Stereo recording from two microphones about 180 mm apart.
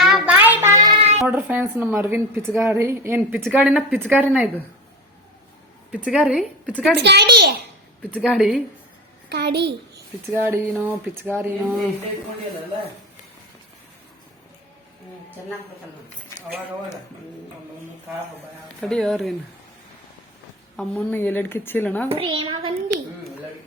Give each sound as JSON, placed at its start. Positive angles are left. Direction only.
{"t": 0.0, "sound": "child singing", "side_deg": -5}
{"t": 1.2, "sound": "a woman's voice", "side_deg": -10}
{"t": 5.9, "sound": "speech", "side_deg": -5}
{"t": 6.9, "sound": "a child's voice", "side_deg": -65}
{"t": 8.1, "sound": "speech", "side_deg": -5}
{"t": 9.3, "sound": "a child's voice", "side_deg": -65}
{"t": 10.2, "sound": "a woman's voice", "side_deg": -10}
{"t": 18.8, "sound": "speech", "side_deg": 5}
{"t": 20.7, "sound": "a woman's voice", "side_deg": 10}
{"t": 22.1, "sound": "a child's voice", "side_deg": -30}